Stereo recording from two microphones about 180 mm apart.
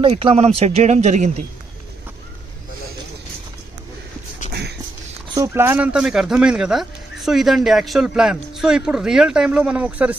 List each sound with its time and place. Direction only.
0.0 s speech: 35° right (ahead or behind)
5.3 s speech: 15° right (ahead or behind)